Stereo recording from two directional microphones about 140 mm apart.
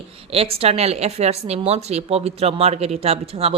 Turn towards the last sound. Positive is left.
turn(degrees=-45)  # may be behind; listen again after turning